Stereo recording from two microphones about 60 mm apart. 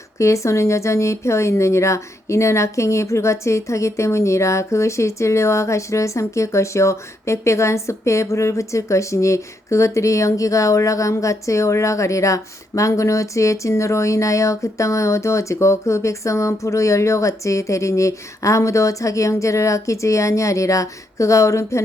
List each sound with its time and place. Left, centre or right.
0.2 s speech: left